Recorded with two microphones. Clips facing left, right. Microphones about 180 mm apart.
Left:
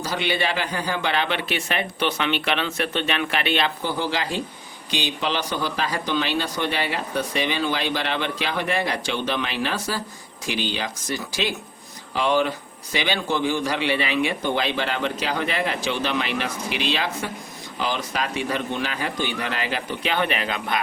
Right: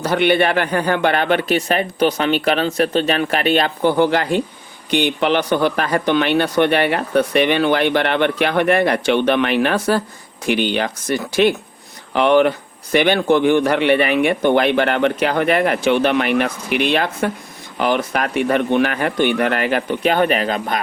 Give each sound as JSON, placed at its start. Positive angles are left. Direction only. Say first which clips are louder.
{"t": 0.0, "sound": "a man's voice", "louder": "right 9 dB", "side_deg": -60}
{"t": 3.8, "sound": "speech", "louder": "right 10 dB", "side_deg": -60}